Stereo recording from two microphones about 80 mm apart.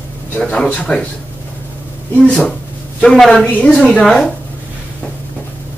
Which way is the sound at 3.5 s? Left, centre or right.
Left.